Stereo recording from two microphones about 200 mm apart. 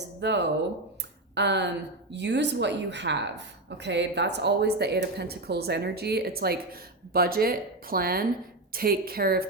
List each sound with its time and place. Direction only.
0.2 s a woman's voice: 60° right (ahead or behind)